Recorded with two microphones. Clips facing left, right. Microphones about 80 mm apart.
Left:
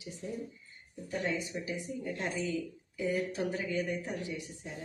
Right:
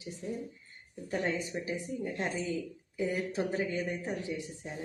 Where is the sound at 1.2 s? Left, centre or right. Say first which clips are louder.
Right 1 dB; right.